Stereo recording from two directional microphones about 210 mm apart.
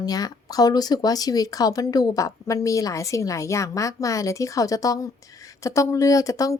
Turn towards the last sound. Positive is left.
turn(degrees=15)  # may be behind; listen again after turning